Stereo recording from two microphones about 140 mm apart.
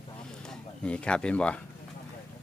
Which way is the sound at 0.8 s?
10° left (ahead or behind).